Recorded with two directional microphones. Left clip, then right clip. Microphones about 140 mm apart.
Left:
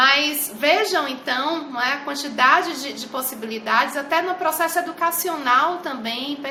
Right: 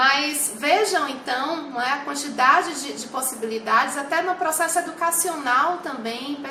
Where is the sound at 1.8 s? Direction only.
15° left (ahead or behind).